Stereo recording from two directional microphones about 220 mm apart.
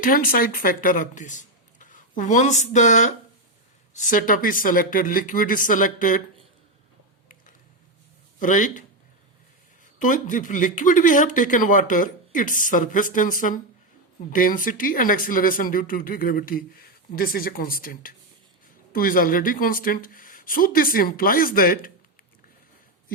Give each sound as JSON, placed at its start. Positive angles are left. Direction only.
{"t": 0.0, "sound": "speech", "side_deg": 40}
{"t": 8.4, "sound": "speech", "side_deg": 35}
{"t": 9.8, "sound": "speech", "side_deg": 35}